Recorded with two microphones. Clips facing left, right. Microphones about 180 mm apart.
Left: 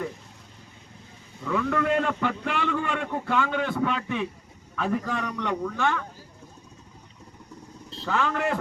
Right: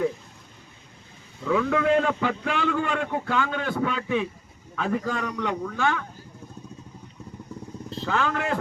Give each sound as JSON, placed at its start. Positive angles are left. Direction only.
{"t": 1.5, "sound": "a man's voice", "side_deg": -5}
{"t": 8.0, "sound": "a man's voice", "side_deg": 0}